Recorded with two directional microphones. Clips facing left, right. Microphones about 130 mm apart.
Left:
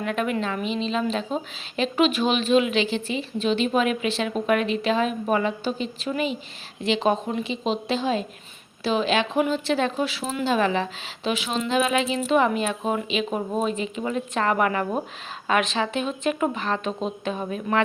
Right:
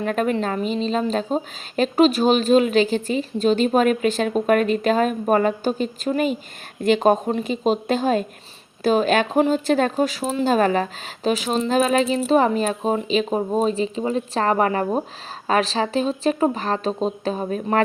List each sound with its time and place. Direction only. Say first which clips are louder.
0.0 s speech: right 4 dB; 40° right (ahead or behind)